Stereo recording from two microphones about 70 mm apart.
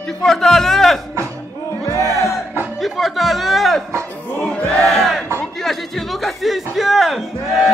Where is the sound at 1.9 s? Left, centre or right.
Left.